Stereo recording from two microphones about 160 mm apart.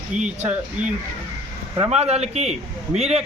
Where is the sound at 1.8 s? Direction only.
40° right (ahead or behind).